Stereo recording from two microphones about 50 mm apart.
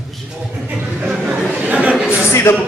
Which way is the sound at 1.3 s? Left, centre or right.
Right.